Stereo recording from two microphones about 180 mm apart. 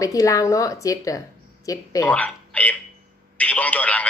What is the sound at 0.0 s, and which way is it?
Speech, 20° left (ahead or behind).